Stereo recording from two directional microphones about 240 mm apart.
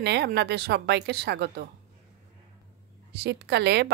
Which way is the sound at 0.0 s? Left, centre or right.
Right.